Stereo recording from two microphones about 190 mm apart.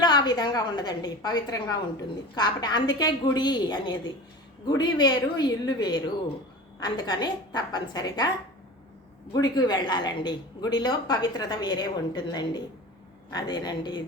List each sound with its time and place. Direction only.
0.0 s speech: 20° left (ahead or behind)
9.3 s speech: 20° left (ahead or behind)